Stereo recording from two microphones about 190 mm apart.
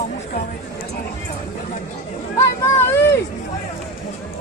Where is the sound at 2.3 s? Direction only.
15° left (ahead or behind).